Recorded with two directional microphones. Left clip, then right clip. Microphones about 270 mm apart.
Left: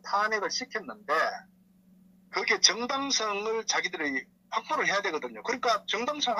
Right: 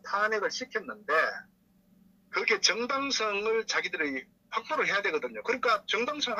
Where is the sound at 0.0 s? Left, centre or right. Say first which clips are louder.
Left 1 dB; centre.